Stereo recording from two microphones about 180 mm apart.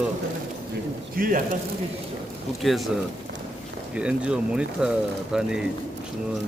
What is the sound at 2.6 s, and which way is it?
Speech, centre (ahead or behind).